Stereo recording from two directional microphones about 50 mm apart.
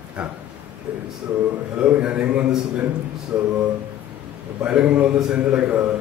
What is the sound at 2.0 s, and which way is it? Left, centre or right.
Speech, right.